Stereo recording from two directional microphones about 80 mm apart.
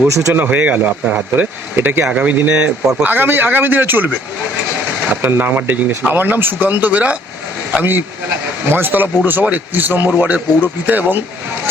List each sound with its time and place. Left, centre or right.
0.1 s speech: right
0.3 s a man's voice: right
5.2 s a man's voice: right